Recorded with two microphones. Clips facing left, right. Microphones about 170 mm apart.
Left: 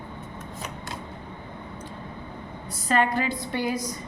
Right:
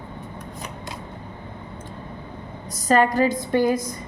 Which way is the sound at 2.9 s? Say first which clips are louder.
Right 6 dB; 40° right (ahead or behind).